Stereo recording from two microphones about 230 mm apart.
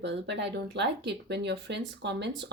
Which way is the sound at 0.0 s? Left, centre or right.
Right.